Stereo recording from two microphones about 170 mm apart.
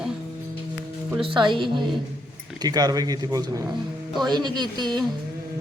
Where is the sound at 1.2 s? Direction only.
30° right (ahead or behind).